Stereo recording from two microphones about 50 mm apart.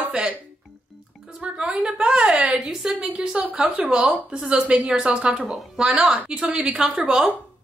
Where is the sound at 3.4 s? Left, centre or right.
Right.